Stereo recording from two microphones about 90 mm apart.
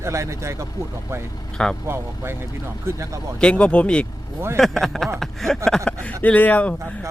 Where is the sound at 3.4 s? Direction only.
10° left (ahead or behind).